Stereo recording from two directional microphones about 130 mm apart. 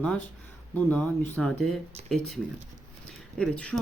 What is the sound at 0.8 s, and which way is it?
Speech, 10° left (ahead or behind).